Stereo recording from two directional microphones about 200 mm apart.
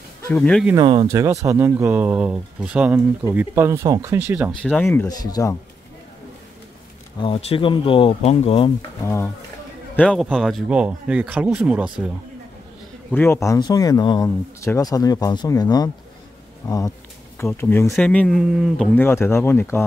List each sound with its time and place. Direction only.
0.3 s speech: 5° left (ahead or behind)
0.7 s speech: 20° right (ahead or behind); by 4.7 s centre (ahead or behind)
4.7 s speech: 10° left (ahead or behind)
7.2 s speech: 25° left (ahead or behind)
9.0 s a man's voice: 15° left (ahead or behind); by 12.1 s 5° right (ahead or behind)
13.1 s speech: 10° left (ahead or behind)
18.9 s speech: 10° left (ahead or behind)